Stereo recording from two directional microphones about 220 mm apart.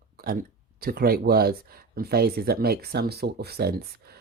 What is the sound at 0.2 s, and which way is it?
Speech, 40° right (ahead or behind).